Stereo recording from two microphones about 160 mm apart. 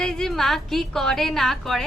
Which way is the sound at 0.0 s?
5° left (ahead or behind).